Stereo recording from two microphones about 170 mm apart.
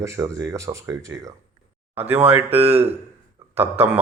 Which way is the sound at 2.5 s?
35° right (ahead or behind).